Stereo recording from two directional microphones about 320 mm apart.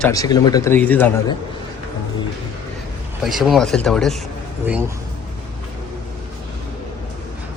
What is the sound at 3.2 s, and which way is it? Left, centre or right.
Speech, centre.